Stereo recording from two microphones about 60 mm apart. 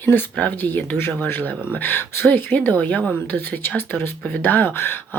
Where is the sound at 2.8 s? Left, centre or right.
Left.